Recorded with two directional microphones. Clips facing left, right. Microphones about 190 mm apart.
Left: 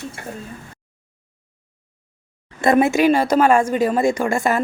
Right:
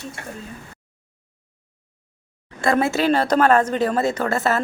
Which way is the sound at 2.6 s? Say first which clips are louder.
Left 4 dB; 20° left (ahead or behind).